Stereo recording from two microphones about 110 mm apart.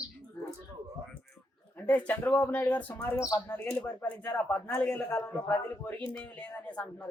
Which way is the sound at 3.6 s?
20° left (ahead or behind).